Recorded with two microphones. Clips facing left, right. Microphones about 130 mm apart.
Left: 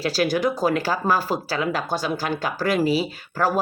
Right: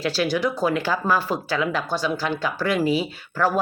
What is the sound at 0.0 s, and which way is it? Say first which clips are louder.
Speech: left 1 dB; 40° left (ahead or behind).